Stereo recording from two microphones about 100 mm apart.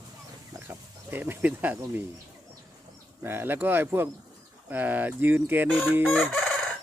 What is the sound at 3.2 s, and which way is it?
Speech, 20° right (ahead or behind).